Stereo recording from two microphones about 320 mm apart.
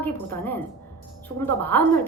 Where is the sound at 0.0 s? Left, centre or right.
Centre.